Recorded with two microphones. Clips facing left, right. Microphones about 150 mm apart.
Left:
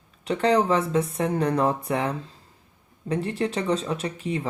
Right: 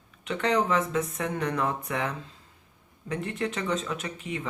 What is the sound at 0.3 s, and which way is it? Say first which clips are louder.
Speech: left 5 dB; 35° left (ahead or behind).